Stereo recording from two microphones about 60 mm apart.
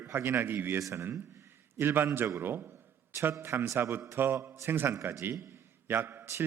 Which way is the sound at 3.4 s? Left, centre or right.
Right.